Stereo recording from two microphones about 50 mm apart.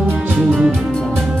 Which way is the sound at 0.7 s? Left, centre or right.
Centre.